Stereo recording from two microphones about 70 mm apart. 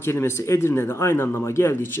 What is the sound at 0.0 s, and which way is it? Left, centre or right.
A man's voice, left.